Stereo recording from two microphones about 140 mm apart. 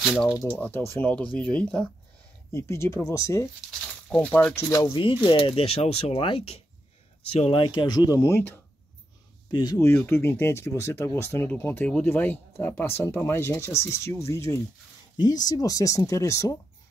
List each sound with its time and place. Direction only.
0.0 s speech: centre (ahead or behind)
0.5 s speech: 15° left (ahead or behind)
2.5 s speech: 20° left (ahead or behind)
4.1 s speech: 10° left (ahead or behind)
4.6 s speech: 20° left (ahead or behind)
5.2 s speech: 35° left (ahead or behind); by 8.5 s 15° left (ahead or behind)
9.5 s speech: 30° left (ahead or behind)
9.8 s speech: 15° left (ahead or behind)